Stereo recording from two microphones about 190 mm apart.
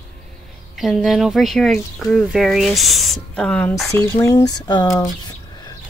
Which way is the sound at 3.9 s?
15° left (ahead or behind).